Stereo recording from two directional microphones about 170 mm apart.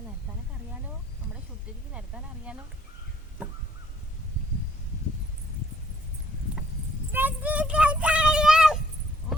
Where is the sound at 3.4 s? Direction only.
10° right (ahead or behind).